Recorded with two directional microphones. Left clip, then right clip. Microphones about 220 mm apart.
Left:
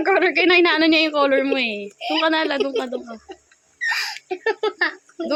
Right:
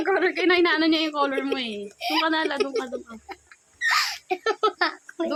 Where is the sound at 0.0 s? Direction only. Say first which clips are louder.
Left 5 dB; 20° left (ahead or behind).